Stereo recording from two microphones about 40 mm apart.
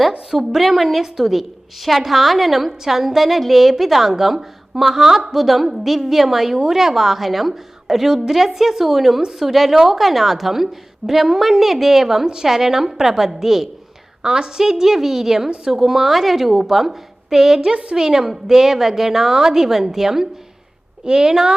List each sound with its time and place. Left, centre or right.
0.3 s a woman's voice: centre
14.2 s a woman's voice: centre
17.6 s a woman's voice: right
17.9 s a woman's voice: centre